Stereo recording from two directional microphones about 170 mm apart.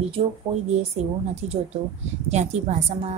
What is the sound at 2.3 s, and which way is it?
Speech, 40° right (ahead or behind).